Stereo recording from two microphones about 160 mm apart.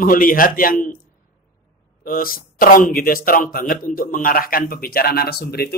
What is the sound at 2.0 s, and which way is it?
Speech, 65° left (ahead or behind).